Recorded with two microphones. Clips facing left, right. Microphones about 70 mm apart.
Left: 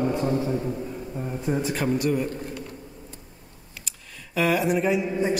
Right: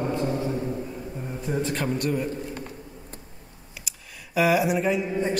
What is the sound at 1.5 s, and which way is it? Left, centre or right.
Speech, centre.